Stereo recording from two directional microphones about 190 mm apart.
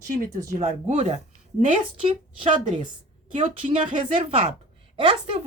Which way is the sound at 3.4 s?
25° right (ahead or behind).